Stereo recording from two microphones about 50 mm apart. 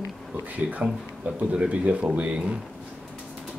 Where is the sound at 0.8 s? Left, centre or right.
Right.